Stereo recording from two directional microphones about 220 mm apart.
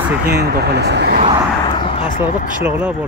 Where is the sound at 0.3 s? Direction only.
45° right (ahead or behind).